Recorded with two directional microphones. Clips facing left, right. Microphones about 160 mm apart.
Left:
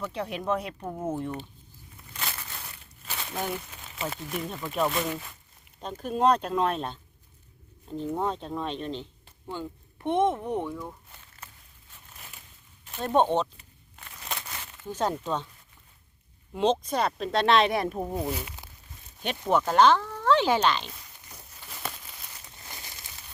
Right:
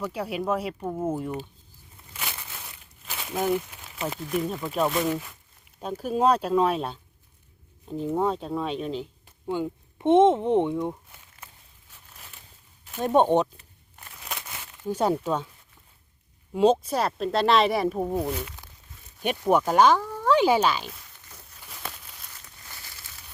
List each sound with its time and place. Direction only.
0.0 s speech: 5° right (ahead or behind)
2.1 s crumpling: 5° right (ahead or behind)
4.2 s speech: centre (ahead or behind)
9.5 s speech: 15° right (ahead or behind)
11.1 s a sound: 10° right (ahead or behind)
13.0 s speech: 10° right (ahead or behind)
14.2 s crumpling: 5° right (ahead or behind)
16.5 s speech: 5° right (ahead or behind); by 18.7 s 10° left (ahead or behind)
19.2 s speech: 10° right (ahead or behind)
21.0 s a sound: 15° left (ahead or behind)
21.7 s a sound: centre (ahead or behind)
22.3 s crumpling: 20° left (ahead or behind)